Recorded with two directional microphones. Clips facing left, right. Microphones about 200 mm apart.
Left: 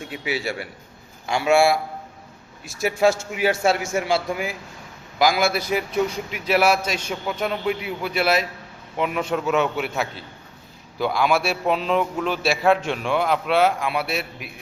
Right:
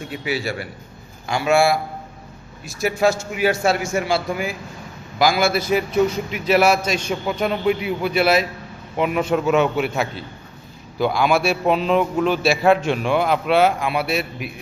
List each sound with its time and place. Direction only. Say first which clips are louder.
0.3 s a man's voice: right 2 dB; 20° left (ahead or behind); by 9.9 s centre (ahead or behind)
10.9 s a man's voice: right 2 dB; centre (ahead or behind)